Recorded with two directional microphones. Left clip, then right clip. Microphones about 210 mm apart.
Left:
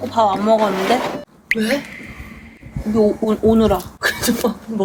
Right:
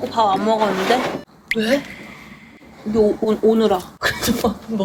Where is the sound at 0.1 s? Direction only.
20° left (ahead or behind).